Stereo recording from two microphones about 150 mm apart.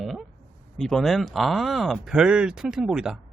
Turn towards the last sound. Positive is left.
turn(degrees=-5)  # may be behind; listen again after turning